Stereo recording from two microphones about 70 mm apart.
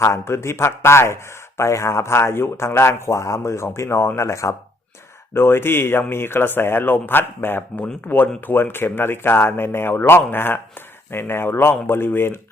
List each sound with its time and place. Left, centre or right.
0.0 s speech: left
5.3 s speech: left